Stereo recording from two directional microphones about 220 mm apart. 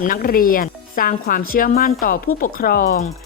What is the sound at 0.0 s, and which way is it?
Speech, 40° left (ahead or behind).